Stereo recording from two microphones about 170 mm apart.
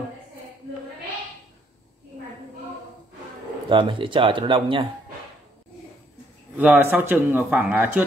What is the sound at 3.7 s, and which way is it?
Speech, 30° right (ahead or behind).